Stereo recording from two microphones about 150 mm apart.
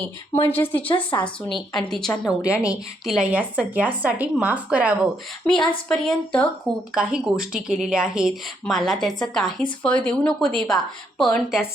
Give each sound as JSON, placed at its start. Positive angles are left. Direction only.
{"t": 0.3, "sound": "speech", "side_deg": 15}
{"t": 0.9, "sound": "speech", "side_deg": 35}
{"t": 1.5, "sound": "a woman's voice", "side_deg": 5}
{"t": 5.5, "sound": "a woman's voice", "side_deg": 5}
{"t": 6.9, "sound": "a woman's voice", "side_deg": -5}